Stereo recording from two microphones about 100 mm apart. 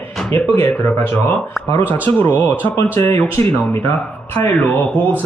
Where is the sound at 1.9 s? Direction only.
20° left (ahead or behind).